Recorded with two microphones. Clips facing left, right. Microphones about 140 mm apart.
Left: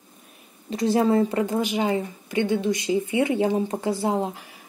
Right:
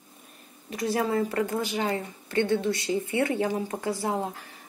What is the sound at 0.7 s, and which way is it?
A woman's voice, 25° left (ahead or behind).